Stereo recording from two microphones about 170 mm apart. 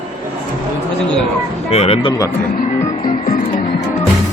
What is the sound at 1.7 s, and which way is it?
Speech, 35° left (ahead or behind).